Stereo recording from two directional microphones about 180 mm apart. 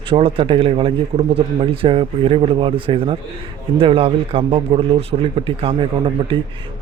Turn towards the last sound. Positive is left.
turn(degrees=-30)  # may be behind; listen again after turning